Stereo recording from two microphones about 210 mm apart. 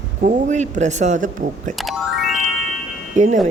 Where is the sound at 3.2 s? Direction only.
35° right (ahead or behind).